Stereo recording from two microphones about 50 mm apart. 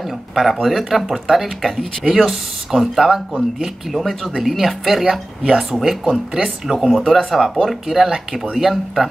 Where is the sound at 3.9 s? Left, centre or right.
Centre.